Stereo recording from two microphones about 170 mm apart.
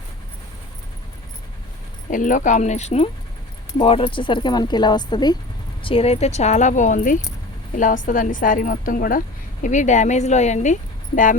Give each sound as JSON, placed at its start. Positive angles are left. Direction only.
{"t": 2.0, "sound": "speech", "side_deg": 50}